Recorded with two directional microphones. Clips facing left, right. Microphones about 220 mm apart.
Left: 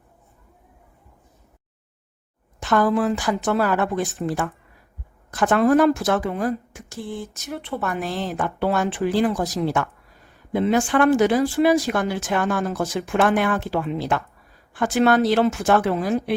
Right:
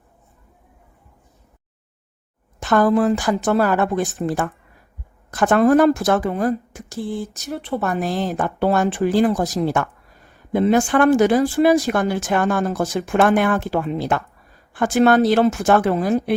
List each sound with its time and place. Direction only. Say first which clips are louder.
2.6 s speech: right 3 dB; 45° right (ahead or behind)